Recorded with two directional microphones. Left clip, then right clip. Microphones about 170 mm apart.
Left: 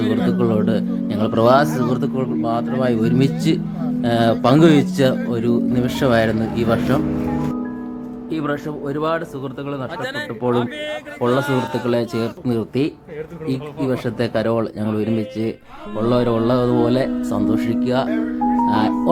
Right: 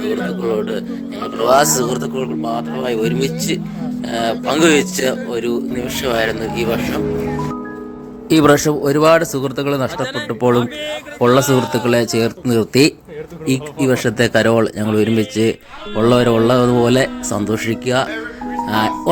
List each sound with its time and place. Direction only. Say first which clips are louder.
0.0 s speech: even; centre (ahead or behind)
1.5 s a man's voice: right 3 dB; 20° right (ahead or behind)
2.1 s speech: even; 5° right (ahead or behind)
8.3 s a man's voice: right 12 dB; 35° right (ahead or behind)
10.0 s speech: right 5 dB; 5° right (ahead or behind)
11.2 s speech: right 6 dB; 20° right (ahead or behind)
11.5 s speech: right 5 dB; 5° right (ahead or behind)